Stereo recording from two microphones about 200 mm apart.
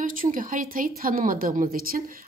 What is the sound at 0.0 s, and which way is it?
A woman's voice, 45° right (ahead or behind).